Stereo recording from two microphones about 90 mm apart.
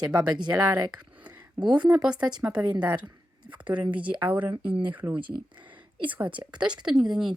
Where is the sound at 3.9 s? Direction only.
15° right (ahead or behind).